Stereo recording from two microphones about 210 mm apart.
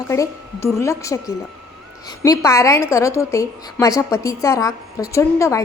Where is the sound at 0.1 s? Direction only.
15° left (ahead or behind).